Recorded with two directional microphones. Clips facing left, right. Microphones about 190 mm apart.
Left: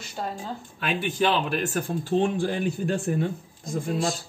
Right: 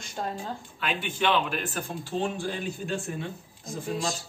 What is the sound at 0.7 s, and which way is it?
Speech, 40° left (ahead or behind).